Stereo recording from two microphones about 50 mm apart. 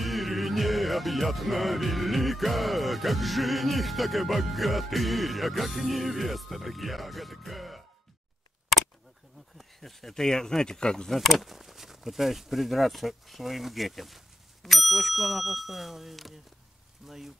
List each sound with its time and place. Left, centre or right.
0.0 s music: centre
9.6 s speech: centre
11.1 s music: centre
17.0 s speech: centre